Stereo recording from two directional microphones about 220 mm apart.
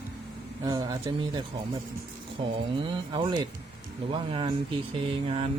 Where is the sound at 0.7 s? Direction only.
15° right (ahead or behind).